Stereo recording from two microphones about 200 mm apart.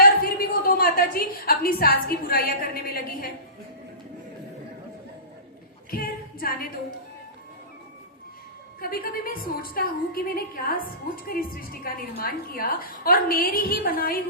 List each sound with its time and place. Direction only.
0.0 s a woman's voice: 45° left (ahead or behind)
5.9 s a sound: 45° left (ahead or behind)
8.8 s a woman's voice: 45° left (ahead or behind)